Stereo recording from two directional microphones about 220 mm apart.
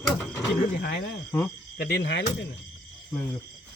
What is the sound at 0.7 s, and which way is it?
Speech, 50° left (ahead or behind).